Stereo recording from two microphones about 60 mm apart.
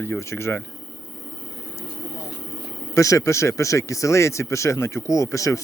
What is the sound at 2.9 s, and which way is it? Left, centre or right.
Speech, left.